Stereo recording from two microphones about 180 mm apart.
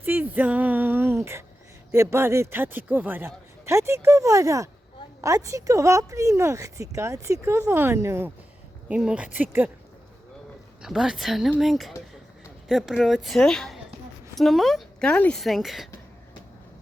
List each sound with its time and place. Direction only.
0.0 s a sound: 10° right (ahead or behind)
1.9 s a man's voice: 15° right (ahead or behind)
10.8 s a woman's voice: 5° right (ahead or behind)